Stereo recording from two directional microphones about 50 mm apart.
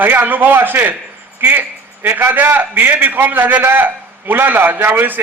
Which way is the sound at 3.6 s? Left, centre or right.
Right.